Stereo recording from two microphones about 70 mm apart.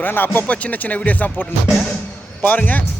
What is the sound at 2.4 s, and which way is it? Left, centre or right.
Speech, left.